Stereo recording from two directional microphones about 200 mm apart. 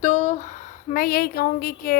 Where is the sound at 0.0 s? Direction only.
35° left (ahead or behind).